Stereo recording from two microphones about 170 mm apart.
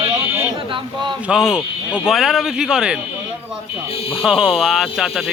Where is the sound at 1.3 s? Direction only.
5° right (ahead or behind).